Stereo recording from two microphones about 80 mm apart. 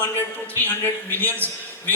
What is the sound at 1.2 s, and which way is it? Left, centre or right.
Speech, left.